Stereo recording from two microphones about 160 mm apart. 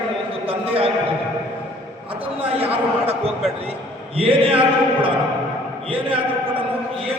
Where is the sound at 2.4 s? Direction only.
35° right (ahead or behind).